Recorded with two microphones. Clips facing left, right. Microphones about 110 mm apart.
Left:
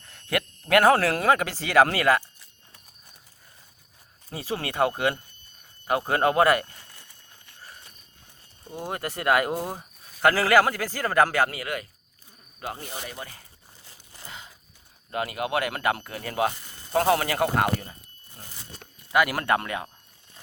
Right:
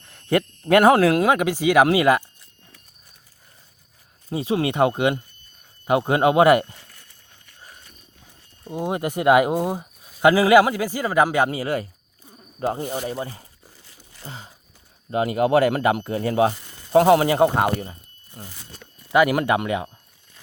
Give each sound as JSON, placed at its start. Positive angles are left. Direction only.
{"t": 0.1, "sound": "speech", "side_deg": -25}
{"t": 4.3, "sound": "speech", "side_deg": -20}
{"t": 8.7, "sound": "speech", "side_deg": -20}
{"t": 19.1, "sound": "speech", "side_deg": -20}